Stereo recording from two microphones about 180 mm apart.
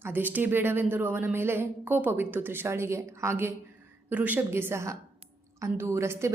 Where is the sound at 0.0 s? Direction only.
10° right (ahead or behind).